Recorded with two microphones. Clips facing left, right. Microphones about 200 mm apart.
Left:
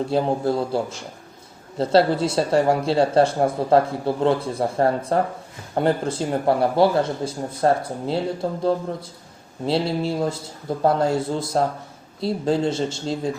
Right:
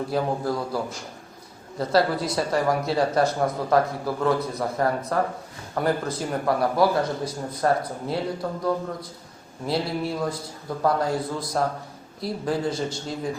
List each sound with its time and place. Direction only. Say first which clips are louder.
0.1 s speech: left 4 dB; 25° left (ahead or behind)